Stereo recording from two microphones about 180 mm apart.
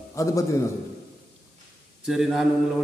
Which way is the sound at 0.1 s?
15° left (ahead or behind).